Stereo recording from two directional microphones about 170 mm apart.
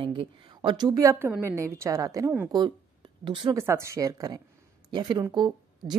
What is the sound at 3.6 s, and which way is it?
Speech, 15° right (ahead or behind).